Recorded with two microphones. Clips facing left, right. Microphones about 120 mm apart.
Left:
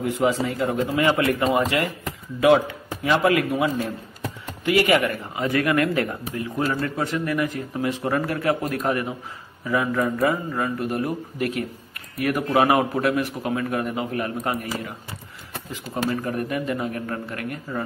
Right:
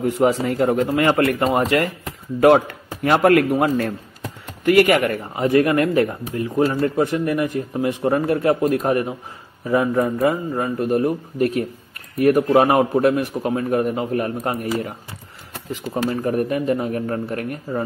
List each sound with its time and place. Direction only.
0.0 s speech: 50° right (ahead or behind)
5.4 s speech: 30° right (ahead or behind)
15.9 s speech: 30° right (ahead or behind)